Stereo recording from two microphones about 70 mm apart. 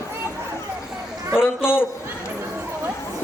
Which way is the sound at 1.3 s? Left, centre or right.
Centre.